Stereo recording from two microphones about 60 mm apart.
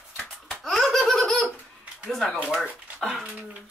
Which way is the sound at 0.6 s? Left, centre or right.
Centre.